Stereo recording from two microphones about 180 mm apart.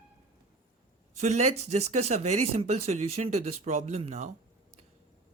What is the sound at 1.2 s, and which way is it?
Speech, 40° right (ahead or behind).